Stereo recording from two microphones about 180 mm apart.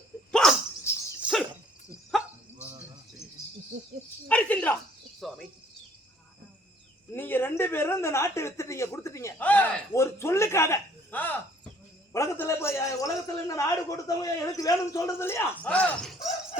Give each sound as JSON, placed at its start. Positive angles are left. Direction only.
{"t": 0.3, "sound": "dog", "side_deg": 5}
{"t": 0.9, "sound": "a sound", "side_deg": 15}
{"t": 1.2, "sound": "a sound", "side_deg": 0}
{"t": 2.1, "sound": "cricket", "side_deg": 0}
{"t": 4.3, "sound": "cricket", "side_deg": 5}
{"t": 7.1, "sound": "speech", "side_deg": 10}